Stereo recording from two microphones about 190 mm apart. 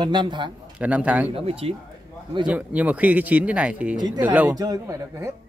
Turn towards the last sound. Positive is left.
turn(degrees=-20)  # may be behind; listen again after turning